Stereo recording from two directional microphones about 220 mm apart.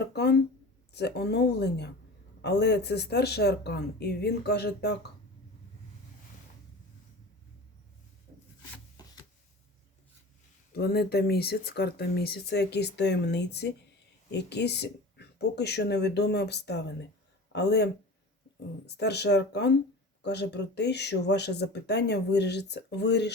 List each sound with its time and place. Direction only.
0.0 s speech: 50° left (ahead or behind)
9.0 s a sound: 20° left (ahead or behind)
10.7 s speech: 45° left (ahead or behind)
18.9 s speech: 50° left (ahead or behind)